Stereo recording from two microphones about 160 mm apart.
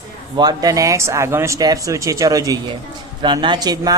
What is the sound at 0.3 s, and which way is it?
Speech, 25° right (ahead or behind).